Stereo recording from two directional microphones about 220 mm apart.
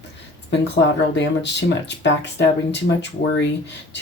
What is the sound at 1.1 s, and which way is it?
Speech, 50° left (ahead or behind).